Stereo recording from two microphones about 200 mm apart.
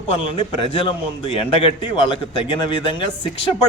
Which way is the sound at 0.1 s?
25° left (ahead or behind).